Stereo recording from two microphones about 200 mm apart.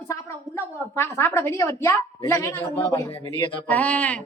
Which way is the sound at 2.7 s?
25° left (ahead or behind).